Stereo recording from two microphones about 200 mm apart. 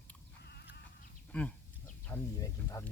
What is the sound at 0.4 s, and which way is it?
Goat, 55° left (ahead or behind).